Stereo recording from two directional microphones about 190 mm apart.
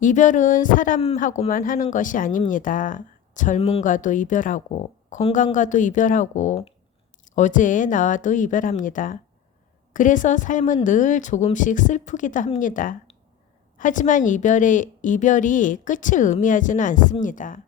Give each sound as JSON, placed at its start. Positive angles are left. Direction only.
{"t": 0.0, "sound": "a woman's voice", "side_deg": 40}
{"t": 3.8, "sound": "a woman's voice", "side_deg": 45}